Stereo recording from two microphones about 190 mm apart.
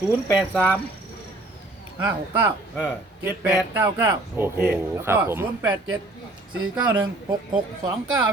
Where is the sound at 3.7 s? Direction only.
15° right (ahead or behind).